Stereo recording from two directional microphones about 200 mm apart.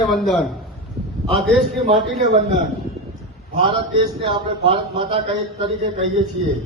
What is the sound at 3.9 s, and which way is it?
A man's voice, 25° right (ahead or behind).